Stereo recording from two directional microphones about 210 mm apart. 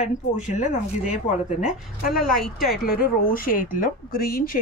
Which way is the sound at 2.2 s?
Centre (ahead or behind).